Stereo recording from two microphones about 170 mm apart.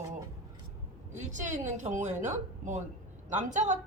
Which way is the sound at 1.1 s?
45° right (ahead or behind).